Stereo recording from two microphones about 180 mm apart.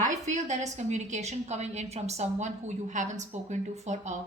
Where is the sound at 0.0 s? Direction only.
40° right (ahead or behind).